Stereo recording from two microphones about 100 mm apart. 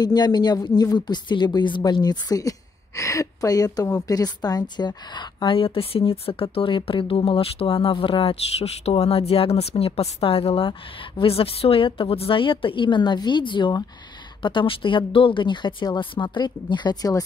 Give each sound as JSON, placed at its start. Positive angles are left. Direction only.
{"t": 0.0, "sound": "a woman's voice", "side_deg": 45}
{"t": 5.6, "sound": "speech", "side_deg": 70}